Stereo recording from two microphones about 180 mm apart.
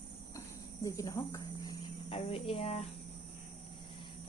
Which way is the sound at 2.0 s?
30° left (ahead or behind).